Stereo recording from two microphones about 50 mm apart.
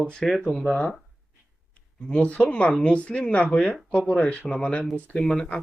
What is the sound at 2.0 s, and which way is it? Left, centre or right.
Speech, left.